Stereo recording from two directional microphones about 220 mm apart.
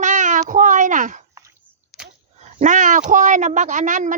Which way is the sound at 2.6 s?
35° right (ahead or behind).